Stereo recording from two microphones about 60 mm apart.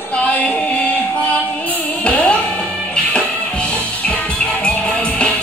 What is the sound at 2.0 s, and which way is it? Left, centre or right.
Music, centre.